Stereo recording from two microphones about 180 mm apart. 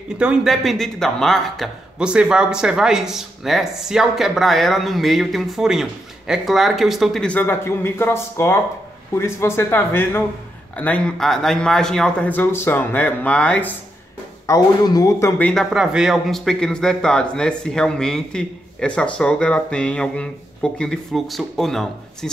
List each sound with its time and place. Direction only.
0.2 s a man's voice: 5° right (ahead or behind)
14.4 s a man's voice: 20° left (ahead or behind)
15.7 s a man's voice: 5° right (ahead or behind)